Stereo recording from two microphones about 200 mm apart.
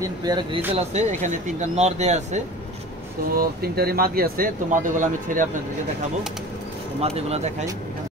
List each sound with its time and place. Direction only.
0.0 s speech: 20° right (ahead or behind)
0.7 s speech: 35° right (ahead or behind)
3.3 s speech: 50° right (ahead or behind)
7.0 s speech: 30° right (ahead or behind)